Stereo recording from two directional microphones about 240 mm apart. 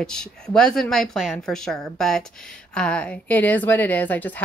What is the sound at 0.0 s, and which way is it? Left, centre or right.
A woman's voice, centre.